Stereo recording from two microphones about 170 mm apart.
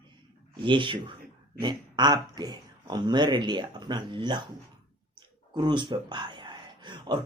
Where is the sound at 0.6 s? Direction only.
30° right (ahead or behind).